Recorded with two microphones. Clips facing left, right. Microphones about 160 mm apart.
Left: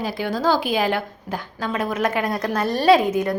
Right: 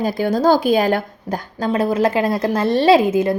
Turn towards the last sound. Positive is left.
turn(degrees=-25)  # may be behind; listen again after turning